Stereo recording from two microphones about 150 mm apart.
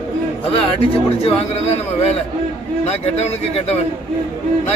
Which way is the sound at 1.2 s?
45° left (ahead or behind).